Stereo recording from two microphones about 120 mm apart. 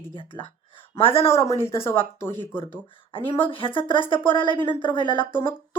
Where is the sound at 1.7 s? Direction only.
20° left (ahead or behind).